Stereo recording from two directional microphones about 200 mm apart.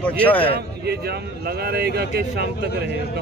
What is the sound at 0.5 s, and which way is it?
Speech, 55° right (ahead or behind).